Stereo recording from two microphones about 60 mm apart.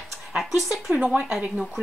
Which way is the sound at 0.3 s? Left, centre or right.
Centre.